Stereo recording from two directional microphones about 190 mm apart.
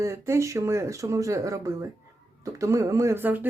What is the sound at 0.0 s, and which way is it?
Speech, 15° right (ahead or behind).